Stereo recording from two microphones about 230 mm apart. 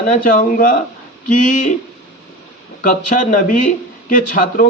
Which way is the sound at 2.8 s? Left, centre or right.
Left.